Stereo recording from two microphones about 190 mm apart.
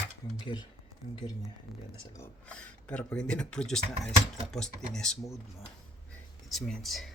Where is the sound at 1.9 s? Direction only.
15° left (ahead or behind).